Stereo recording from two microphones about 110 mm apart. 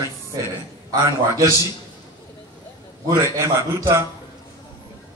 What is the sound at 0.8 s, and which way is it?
Speech, 30° right (ahead or behind).